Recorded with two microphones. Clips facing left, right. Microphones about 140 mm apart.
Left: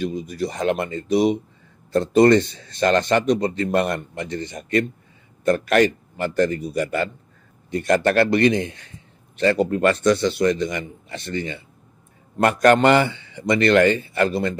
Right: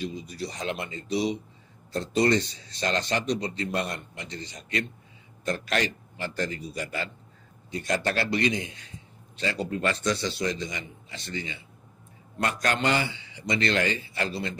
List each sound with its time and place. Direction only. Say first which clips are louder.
0.0 s speech: left 8 dB; 50° left (ahead or behind)